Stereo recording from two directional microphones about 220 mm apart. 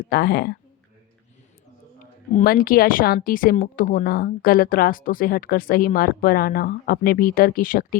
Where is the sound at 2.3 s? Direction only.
40° left (ahead or behind).